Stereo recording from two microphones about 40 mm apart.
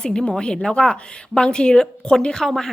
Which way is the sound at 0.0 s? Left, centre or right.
Centre.